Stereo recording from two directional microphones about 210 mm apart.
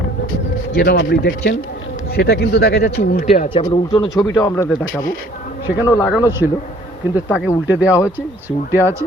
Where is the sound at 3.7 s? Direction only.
20° left (ahead or behind).